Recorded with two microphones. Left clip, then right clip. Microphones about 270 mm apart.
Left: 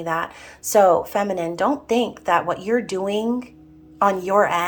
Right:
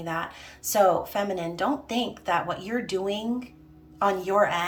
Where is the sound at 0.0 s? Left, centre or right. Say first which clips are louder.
Left 7 dB; centre.